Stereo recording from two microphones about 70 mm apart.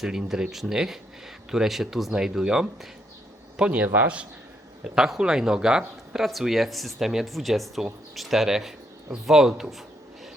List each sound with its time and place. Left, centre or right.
0.0 s speech: centre
3.6 s a man's voice: centre
4.8 s speech: centre